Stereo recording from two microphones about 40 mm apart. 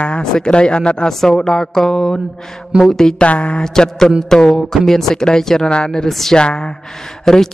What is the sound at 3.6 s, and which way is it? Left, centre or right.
Speech, centre.